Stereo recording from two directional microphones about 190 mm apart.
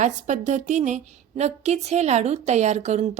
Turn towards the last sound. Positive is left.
turn(degrees=-35)  # may be behind; listen again after turning